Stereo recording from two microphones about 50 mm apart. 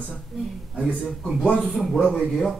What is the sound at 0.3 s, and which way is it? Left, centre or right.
Speech, centre.